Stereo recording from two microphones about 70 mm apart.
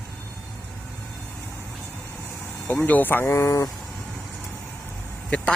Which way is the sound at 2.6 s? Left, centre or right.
Left.